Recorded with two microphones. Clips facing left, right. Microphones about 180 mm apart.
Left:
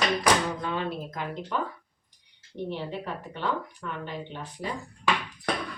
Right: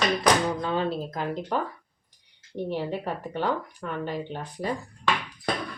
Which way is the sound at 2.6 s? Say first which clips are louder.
Right 4 dB; 40° right (ahead or behind).